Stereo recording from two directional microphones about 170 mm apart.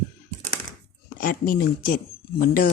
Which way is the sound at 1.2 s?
60° left (ahead or behind).